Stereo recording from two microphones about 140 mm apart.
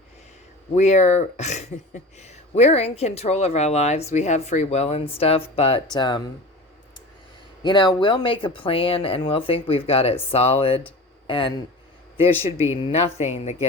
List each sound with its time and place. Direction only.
0.8 s speech: 55° left (ahead or behind); by 6.2 s 30° left (ahead or behind)
7.6 s a man's voice: 35° left (ahead or behind); by 13.7 s 50° left (ahead or behind)